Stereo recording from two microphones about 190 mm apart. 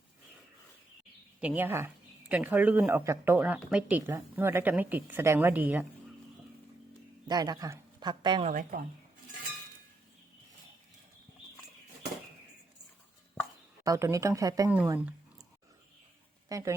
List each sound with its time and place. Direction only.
1.4 s speech: 10° right (ahead or behind)
7.3 s a man's voice: 20° right (ahead or behind)
8.4 s speech: 45° right (ahead or behind)
13.8 s speech: 15° right (ahead or behind)
14.7 s speech: 10° right (ahead or behind)
16.5 s a woman's voice: 15° right (ahead or behind)